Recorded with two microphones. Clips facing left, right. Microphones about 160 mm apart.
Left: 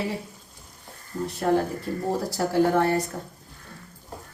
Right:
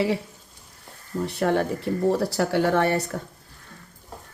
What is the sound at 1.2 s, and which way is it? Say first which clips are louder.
Speech: even; 75° right (ahead or behind).